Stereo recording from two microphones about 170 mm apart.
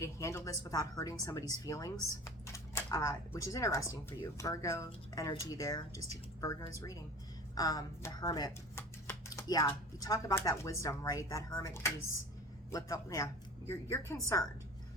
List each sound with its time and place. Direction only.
0.0 s a woman's voice: 20° left (ahead or behind)